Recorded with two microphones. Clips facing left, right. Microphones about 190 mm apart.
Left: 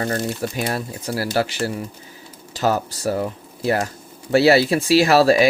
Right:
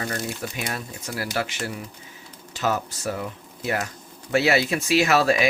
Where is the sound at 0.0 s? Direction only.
40° left (ahead or behind).